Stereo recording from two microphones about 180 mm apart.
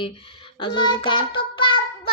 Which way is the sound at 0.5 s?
25° left (ahead or behind).